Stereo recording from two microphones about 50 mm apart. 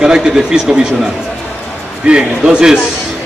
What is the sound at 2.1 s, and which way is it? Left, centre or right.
Speech, centre.